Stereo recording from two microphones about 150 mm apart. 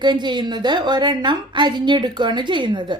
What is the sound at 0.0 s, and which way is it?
A woman's voice, 30° right (ahead or behind).